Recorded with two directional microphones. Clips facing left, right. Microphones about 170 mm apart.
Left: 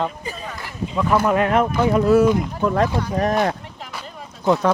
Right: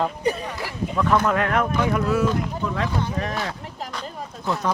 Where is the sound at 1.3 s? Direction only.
20° left (ahead or behind).